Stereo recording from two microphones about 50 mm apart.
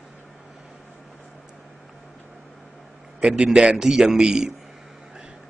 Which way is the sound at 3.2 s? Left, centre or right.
Right.